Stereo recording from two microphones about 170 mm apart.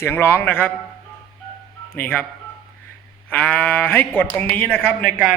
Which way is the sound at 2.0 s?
10° left (ahead or behind).